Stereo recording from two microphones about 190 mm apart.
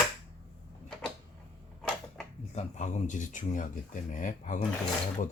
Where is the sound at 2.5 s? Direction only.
35° left (ahead or behind).